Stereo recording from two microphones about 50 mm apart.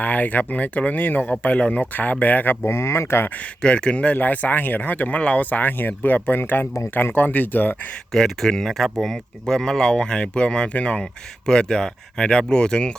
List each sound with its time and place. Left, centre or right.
0.0 s speech: left
1.3 s speech: left
2.6 s speech: left
3.6 s speech: centre; by 7.8 s left
8.1 s speech: centre